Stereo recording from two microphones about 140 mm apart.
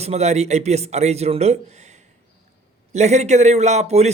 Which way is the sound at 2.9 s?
55° right (ahead or behind).